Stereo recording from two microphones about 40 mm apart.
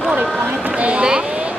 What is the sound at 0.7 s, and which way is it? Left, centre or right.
Speech, right.